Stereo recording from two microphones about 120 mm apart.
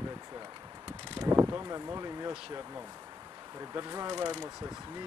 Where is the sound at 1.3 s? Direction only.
25° right (ahead or behind).